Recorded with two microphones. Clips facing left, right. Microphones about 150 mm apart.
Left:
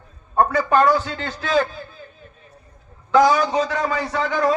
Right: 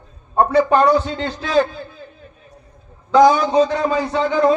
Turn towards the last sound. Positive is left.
turn(degrees=-25)  # may be behind; listen again after turning